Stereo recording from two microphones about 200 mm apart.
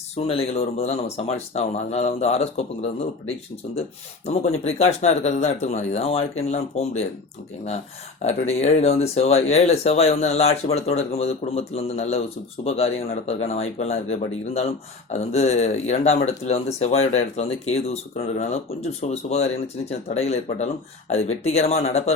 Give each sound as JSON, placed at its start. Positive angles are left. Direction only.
{"t": 0.2, "sound": "speech", "side_deg": 30}
{"t": 4.5, "sound": "speech", "side_deg": 30}
{"t": 8.2, "sound": "speech", "side_deg": 35}